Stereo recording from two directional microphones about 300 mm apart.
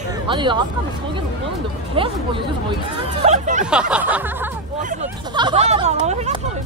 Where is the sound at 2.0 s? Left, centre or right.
Centre.